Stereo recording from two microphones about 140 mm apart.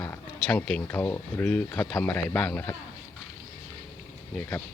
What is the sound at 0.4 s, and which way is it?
Speech, 10° left (ahead or behind).